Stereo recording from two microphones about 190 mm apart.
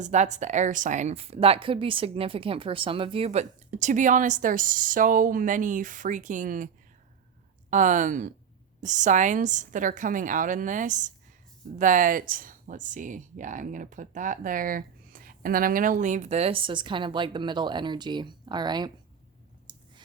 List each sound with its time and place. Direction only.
0.0 s speech: 40° right (ahead or behind)
7.7 s speech: 40° right (ahead or behind); by 18.9 s 20° right (ahead or behind)